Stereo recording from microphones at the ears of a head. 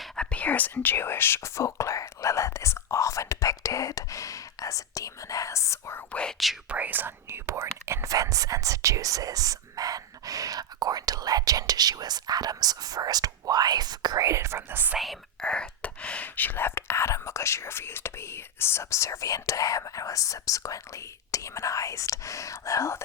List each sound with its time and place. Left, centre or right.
0.3 s whispering: left
6.9 s whispering: right
16.2 s whispering: left